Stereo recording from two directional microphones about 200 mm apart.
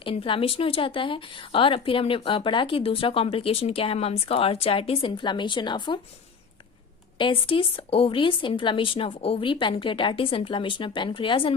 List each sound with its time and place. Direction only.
0.0 s speech: 25° left (ahead or behind)
7.2 s speech: 25° left (ahead or behind)